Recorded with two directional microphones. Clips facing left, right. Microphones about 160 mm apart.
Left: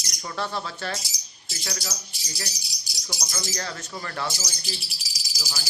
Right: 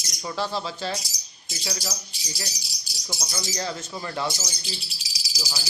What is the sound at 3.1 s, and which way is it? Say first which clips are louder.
Speech: right 1 dB; 20° right (ahead or behind).